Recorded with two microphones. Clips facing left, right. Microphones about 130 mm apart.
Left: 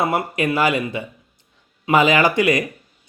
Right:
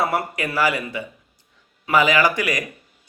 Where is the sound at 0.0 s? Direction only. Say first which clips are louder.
Left 3 dB; 20° left (ahead or behind).